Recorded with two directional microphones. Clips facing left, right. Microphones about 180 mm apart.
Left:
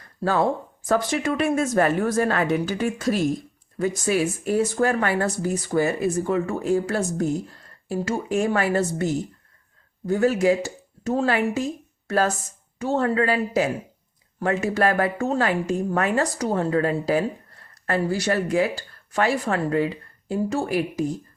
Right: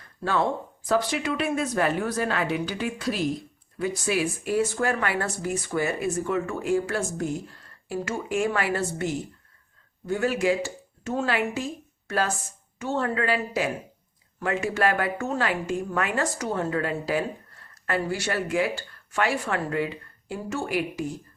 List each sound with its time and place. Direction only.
0.9 s speech: 45° left (ahead or behind)
10.1 s speech: 40° left (ahead or behind)